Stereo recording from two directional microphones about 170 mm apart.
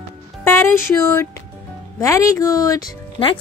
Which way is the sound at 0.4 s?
15° left (ahead or behind).